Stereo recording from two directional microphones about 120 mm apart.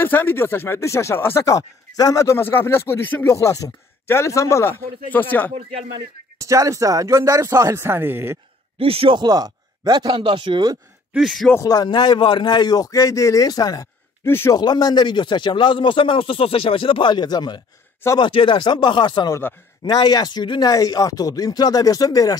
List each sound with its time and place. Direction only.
0.0 s speech: 15° left (ahead or behind)
3.3 s speech: 30° left (ahead or behind)
6.4 s speech: 25° right (ahead or behind)
8.7 s speech: 50° right (ahead or behind)
11.1 s speech: centre (ahead or behind)
11.6 s speech: 35° left (ahead or behind)
14.2 s speech: 20° left (ahead or behind)
14.5 s speech: 35° left (ahead or behind)